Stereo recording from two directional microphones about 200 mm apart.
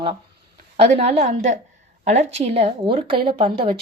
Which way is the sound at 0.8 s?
30° right (ahead or behind).